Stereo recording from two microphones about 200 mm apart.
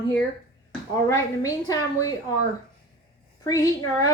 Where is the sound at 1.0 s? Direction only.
15° left (ahead or behind).